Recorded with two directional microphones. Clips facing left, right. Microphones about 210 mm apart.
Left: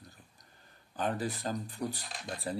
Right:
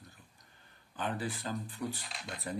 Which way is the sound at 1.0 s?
40° left (ahead or behind).